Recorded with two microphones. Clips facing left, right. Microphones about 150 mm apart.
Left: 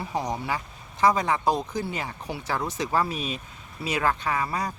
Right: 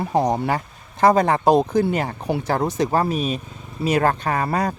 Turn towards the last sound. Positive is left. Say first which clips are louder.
# right 6 dB
turn(degrees=-60)  # may be behind; listen again after turning